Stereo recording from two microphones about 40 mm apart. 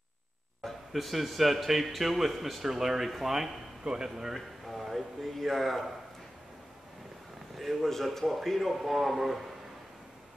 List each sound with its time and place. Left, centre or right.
0.7 s speech: centre
3.8 s speech: centre
4.3 s a sound: centre
7.5 s speech: centre